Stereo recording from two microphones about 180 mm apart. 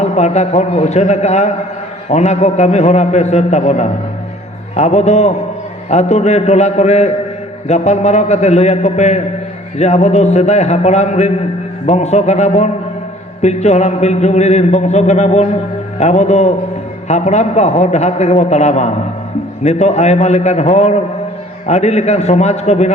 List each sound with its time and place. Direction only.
0.0 s a man's voice: 40° left (ahead or behind)